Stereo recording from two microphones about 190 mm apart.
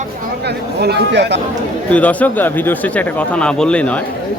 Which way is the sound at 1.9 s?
5° left (ahead or behind).